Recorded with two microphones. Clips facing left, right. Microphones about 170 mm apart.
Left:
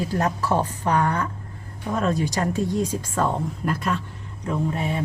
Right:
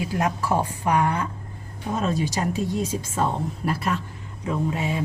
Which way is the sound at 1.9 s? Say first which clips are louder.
Left 1 dB; 25° right (ahead or behind).